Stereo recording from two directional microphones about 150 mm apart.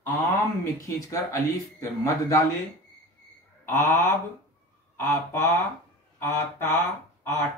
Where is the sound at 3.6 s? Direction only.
15° left (ahead or behind).